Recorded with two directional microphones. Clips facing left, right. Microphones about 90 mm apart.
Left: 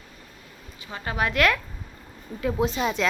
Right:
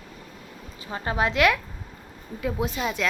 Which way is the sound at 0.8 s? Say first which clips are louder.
Right 2 dB; 30° right (ahead or behind).